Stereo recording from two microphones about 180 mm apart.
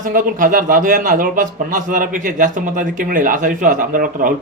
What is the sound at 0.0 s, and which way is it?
A man's voice, 45° right (ahead or behind).